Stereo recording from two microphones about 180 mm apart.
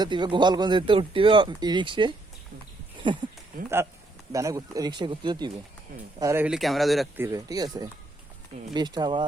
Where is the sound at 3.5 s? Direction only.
50° right (ahead or behind).